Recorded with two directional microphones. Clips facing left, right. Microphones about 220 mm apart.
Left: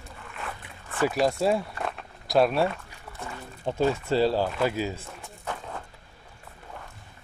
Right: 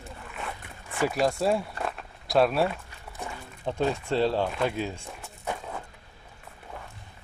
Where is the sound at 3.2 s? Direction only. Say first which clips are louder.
Right 1 dB; 15° right (ahead or behind).